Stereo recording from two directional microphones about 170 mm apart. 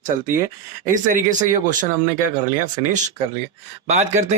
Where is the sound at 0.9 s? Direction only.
50° right (ahead or behind).